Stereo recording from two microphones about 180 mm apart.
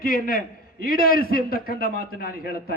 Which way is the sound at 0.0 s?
50° left (ahead or behind).